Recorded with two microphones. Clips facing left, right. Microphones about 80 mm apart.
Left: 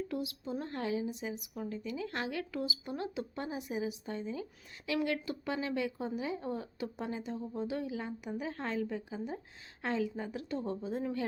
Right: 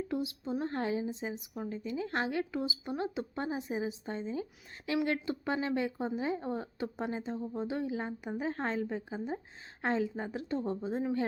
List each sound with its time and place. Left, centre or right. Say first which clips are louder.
0.1 s a woman's voice: right 3 dB; right